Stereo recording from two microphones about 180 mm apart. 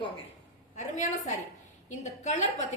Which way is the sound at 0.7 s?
40° left (ahead or behind).